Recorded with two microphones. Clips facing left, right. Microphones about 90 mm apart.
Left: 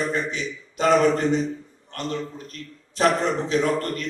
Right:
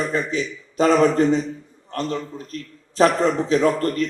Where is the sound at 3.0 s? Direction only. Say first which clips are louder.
Right 4 dB; 35° right (ahead or behind).